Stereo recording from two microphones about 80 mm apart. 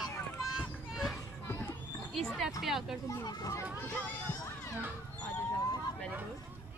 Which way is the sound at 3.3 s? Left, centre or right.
Left.